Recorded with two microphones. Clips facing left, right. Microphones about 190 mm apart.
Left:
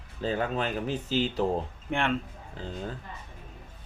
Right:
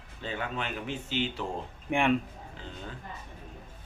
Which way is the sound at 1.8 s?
10° right (ahead or behind).